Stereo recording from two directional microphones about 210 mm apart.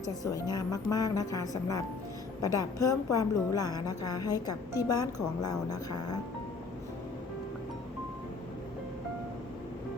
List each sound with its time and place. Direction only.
0.3 s a woman's voice: 15° left (ahead or behind)